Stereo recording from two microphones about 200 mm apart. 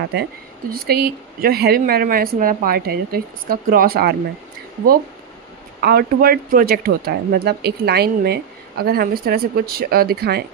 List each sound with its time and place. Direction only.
0.0 s speech: 55° right (ahead or behind)
5.8 s speech: 50° right (ahead or behind)